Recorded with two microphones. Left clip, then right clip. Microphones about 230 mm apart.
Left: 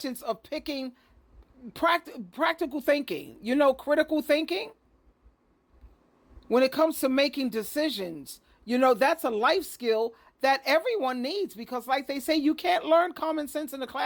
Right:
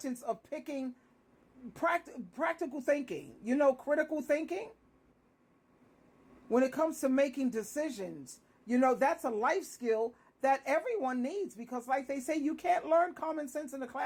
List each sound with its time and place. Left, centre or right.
0.5 s a woman's voice: left
6.5 s a woman's voice: left
8.8 s a woman's voice: left